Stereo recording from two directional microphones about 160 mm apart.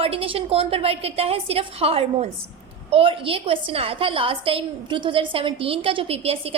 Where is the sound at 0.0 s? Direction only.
35° right (ahead or behind).